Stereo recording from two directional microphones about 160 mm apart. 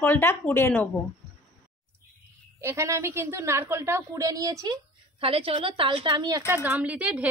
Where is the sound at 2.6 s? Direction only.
15° right (ahead or behind).